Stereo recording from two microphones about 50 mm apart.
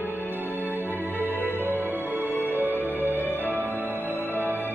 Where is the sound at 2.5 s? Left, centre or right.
Right.